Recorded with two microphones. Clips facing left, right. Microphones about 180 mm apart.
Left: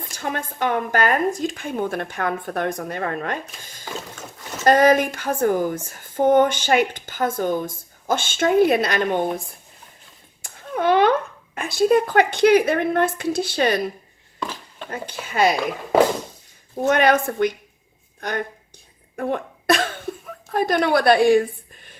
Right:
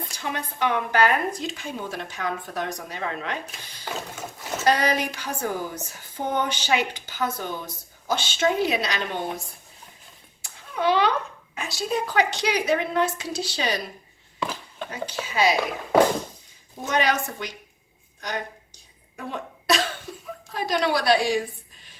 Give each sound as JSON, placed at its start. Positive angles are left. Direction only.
{"t": 0.1, "sound": "speech", "side_deg": 50}
{"t": 10.4, "sound": "cat", "side_deg": 50}
{"t": 11.5, "sound": "speech", "side_deg": 55}
{"t": 14.3, "sound": "a sound", "side_deg": -10}
{"t": 14.8, "sound": "speech", "side_deg": 55}
{"t": 16.8, "sound": "a woman's voice", "side_deg": 55}